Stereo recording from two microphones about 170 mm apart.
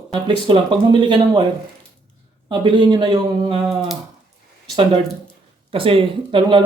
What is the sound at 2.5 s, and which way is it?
Speech, 25° right (ahead or behind).